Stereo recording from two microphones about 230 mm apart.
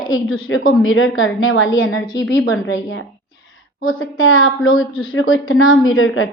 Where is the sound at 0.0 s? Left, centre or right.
Left.